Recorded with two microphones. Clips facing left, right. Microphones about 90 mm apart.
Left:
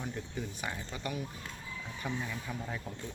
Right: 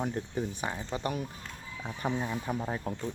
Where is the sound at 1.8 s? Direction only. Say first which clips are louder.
Right 6 dB; 40° right (ahead or behind).